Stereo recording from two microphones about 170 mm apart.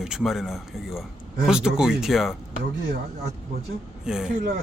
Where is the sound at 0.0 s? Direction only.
5° right (ahead or behind).